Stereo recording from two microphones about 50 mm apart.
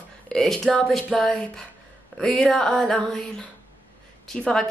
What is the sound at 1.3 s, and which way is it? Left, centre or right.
Speech, centre.